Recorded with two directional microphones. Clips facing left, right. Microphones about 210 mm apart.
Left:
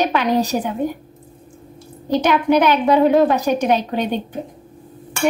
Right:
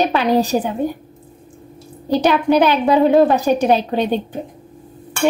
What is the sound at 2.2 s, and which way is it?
A woman's voice, 30° right (ahead or behind).